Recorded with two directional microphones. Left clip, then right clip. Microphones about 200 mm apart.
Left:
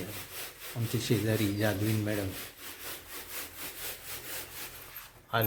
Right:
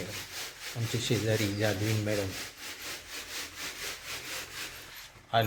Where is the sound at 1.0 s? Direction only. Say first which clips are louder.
Right 1 dB; 10° left (ahead or behind).